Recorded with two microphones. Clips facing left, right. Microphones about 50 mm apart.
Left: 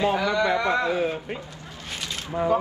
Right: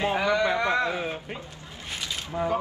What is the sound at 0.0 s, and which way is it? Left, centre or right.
Speech, right.